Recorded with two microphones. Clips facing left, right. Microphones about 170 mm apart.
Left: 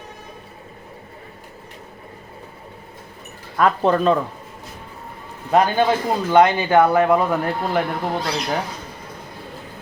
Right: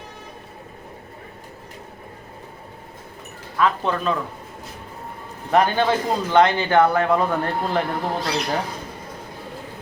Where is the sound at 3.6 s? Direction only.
40° left (ahead or behind).